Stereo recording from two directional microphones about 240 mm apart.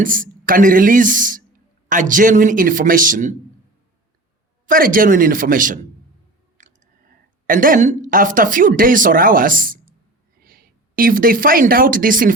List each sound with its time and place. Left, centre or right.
0.0 s speech: right
4.6 s speech: right
6.6 s clicking: right
7.4 s a woman's voice: right